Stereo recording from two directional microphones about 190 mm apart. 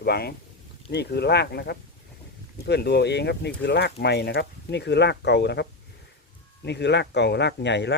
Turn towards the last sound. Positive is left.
turn(degrees=65)  # may be behind; listen again after turning